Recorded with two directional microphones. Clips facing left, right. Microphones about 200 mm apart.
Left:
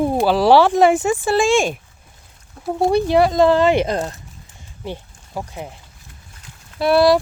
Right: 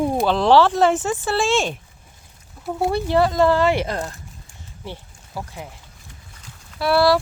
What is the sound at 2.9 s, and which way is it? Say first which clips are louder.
Speech: left 4 dB; 15° left (ahead or behind).